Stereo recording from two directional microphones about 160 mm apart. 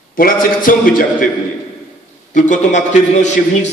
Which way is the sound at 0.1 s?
60° left (ahead or behind).